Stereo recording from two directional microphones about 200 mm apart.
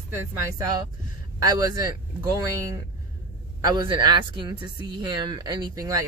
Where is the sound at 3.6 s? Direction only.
20° right (ahead or behind).